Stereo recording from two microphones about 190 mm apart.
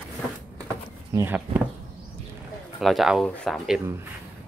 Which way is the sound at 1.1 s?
10° right (ahead or behind).